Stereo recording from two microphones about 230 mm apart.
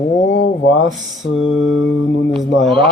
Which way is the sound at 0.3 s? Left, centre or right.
Left.